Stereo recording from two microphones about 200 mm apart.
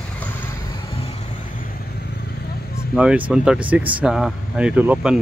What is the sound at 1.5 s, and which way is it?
Vehicle, 45° left (ahead or behind).